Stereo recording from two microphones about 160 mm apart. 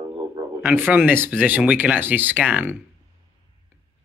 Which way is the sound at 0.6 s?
10° right (ahead or behind).